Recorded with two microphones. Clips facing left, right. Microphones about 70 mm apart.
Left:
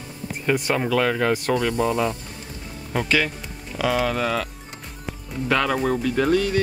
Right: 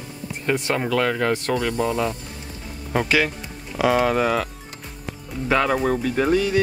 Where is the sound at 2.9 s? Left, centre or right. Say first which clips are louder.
Right 2 dB; centre.